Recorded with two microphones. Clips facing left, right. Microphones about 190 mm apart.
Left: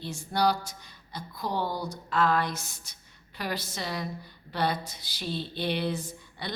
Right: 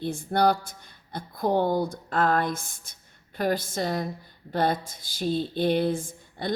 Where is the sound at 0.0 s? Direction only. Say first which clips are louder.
Right 4 dB; 55° right (ahead or behind).